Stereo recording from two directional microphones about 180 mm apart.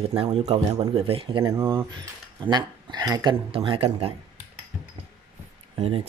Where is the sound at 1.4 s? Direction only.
15° right (ahead or behind).